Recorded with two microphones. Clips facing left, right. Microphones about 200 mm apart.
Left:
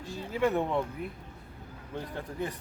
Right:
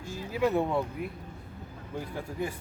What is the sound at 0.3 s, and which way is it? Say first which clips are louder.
Speech: right 1 dB; 10° right (ahead or behind).